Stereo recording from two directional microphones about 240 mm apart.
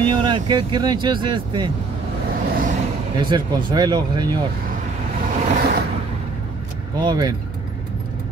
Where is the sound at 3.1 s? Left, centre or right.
Centre.